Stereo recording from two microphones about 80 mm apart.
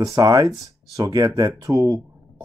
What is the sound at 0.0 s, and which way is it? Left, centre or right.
Speech, right.